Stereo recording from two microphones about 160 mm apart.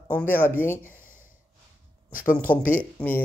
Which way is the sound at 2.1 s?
60° left (ahead or behind).